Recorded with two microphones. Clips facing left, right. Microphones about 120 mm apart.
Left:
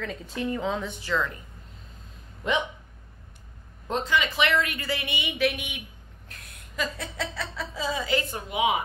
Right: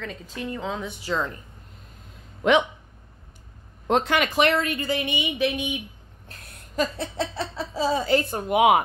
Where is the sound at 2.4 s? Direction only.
75° right (ahead or behind).